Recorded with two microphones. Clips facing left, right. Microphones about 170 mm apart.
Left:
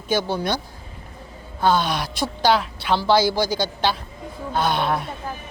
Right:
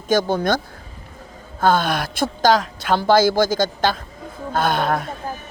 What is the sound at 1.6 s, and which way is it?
A woman's voice, 50° right (ahead or behind).